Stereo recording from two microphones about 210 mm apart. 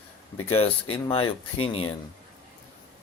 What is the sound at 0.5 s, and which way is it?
Speech, 25° left (ahead or behind).